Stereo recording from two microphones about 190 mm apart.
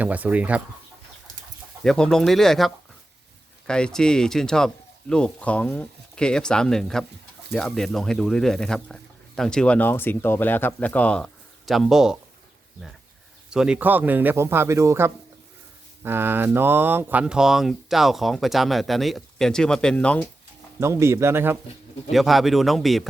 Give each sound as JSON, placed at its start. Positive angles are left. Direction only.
{"t": 0.0, "sound": "speech", "side_deg": -10}
{"t": 1.8, "sound": "speech", "side_deg": 0}
{"t": 13.5, "sound": "speech", "side_deg": -5}
{"t": 20.7, "sound": "speech", "side_deg": -15}
{"t": 22.1, "sound": "speech", "side_deg": 0}